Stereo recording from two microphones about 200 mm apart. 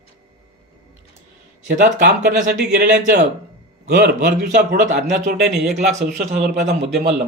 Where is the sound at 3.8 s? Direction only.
50° right (ahead or behind).